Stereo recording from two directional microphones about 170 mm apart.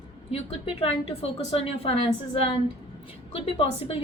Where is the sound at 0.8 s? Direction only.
35° left (ahead or behind).